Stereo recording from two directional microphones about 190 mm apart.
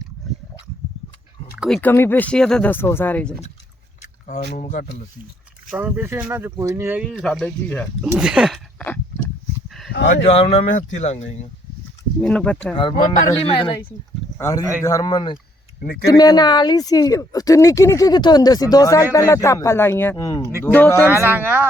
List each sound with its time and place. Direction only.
0.2 s dog: centre (ahead or behind)
1.5 s speech: centre (ahead or behind)
1.8 s speech: 10° left (ahead or behind)
4.0 s speech: 40° left (ahead or behind)
5.7 s speech: 10° right (ahead or behind); by 7.9 s 10° left (ahead or behind)
8.1 s speech: 5° right (ahead or behind)
9.6 s dog: centre (ahead or behind)
10.2 s speech: 30° left (ahead or behind)
12.2 s speech: 5° left (ahead or behind)
12.7 s speech: 25° left (ahead or behind); by 21.1 s 10° left (ahead or behind)
21.1 s speech: 10° right (ahead or behind)